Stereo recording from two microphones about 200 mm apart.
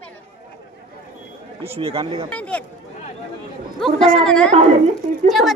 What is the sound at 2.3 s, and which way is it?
Speech, 5° left (ahead or behind).